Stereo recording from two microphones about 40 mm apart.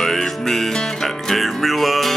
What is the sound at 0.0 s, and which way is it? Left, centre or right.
Music, centre.